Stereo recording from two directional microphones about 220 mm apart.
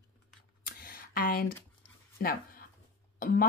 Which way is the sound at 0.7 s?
40° left (ahead or behind).